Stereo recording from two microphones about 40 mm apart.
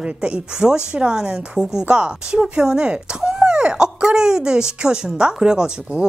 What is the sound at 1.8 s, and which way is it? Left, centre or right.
Speech, right.